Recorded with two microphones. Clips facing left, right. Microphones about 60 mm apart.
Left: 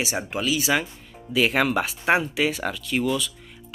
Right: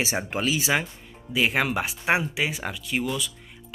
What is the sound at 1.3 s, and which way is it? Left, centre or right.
Speech, centre.